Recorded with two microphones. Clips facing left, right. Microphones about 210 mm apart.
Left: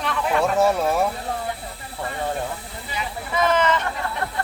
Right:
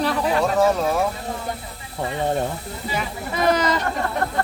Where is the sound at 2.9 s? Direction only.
40° right (ahead or behind).